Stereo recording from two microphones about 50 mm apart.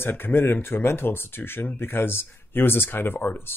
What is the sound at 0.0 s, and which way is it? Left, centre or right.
Speech, left.